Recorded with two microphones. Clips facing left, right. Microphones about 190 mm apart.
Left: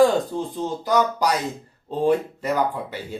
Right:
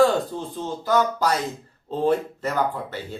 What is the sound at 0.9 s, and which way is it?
Speech, 15° left (ahead or behind).